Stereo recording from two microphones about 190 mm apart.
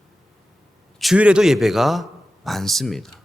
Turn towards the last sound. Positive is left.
turn(degrees=0)  # may be behind; listen again after turning